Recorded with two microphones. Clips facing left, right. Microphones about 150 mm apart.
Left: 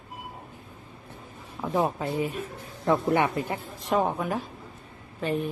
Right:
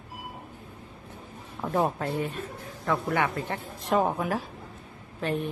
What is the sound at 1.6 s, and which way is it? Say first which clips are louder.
Speech: even; centre (ahead or behind).